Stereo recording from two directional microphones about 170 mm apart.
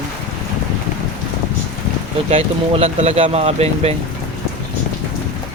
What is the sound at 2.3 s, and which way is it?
Speech, 35° right (ahead or behind).